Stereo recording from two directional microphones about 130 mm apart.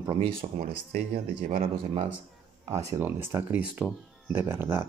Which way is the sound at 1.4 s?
65° right (ahead or behind).